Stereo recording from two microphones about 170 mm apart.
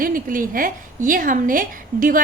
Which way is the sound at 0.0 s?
55° right (ahead or behind).